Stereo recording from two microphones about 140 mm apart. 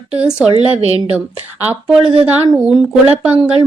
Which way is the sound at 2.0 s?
40° right (ahead or behind).